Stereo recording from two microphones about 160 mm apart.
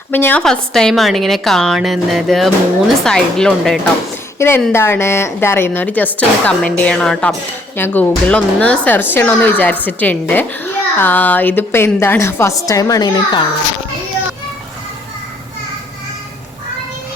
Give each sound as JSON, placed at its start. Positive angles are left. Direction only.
{"t": 0.1, "sound": "a woman's voice", "side_deg": 10}
{"t": 4.4, "sound": "a woman's voice", "side_deg": 15}